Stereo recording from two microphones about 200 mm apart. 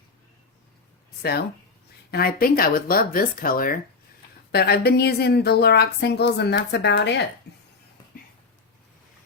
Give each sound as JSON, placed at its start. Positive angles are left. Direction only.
{"t": 1.2, "sound": "a woman's voice", "side_deg": 50}